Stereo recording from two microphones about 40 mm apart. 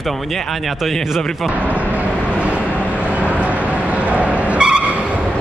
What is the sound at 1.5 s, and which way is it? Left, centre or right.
Speech, right.